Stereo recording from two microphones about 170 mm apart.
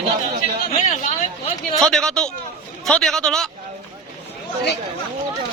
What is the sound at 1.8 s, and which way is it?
A man's voice, centre (ahead or behind).